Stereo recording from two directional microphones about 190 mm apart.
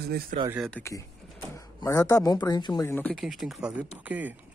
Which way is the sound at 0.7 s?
15° left (ahead or behind).